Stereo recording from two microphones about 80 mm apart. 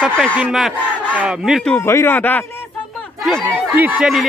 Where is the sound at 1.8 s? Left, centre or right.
Left.